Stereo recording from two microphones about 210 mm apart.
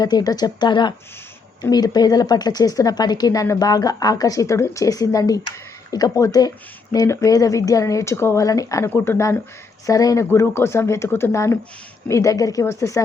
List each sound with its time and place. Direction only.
0.0 s a woman's voice: 20° left (ahead or behind)